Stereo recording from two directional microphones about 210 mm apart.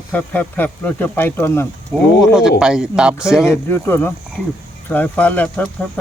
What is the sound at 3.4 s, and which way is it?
Speech, 10° left (ahead or behind).